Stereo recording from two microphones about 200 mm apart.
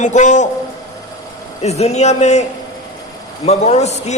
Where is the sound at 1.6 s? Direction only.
35° left (ahead or behind).